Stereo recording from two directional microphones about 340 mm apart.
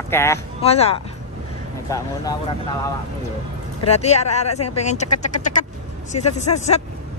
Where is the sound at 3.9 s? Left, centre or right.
Centre.